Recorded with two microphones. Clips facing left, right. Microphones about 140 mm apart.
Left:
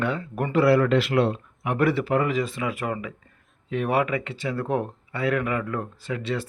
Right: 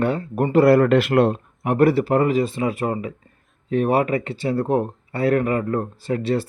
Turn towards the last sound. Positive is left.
turn(degrees=-35)  # may be behind; listen again after turning